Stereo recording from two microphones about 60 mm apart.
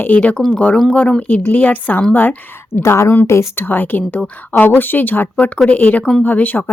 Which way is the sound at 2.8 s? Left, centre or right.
Left.